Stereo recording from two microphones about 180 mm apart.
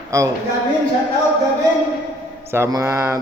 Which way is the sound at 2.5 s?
15° right (ahead or behind).